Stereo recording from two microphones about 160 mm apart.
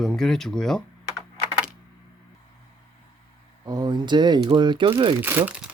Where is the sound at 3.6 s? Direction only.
25° right (ahead or behind).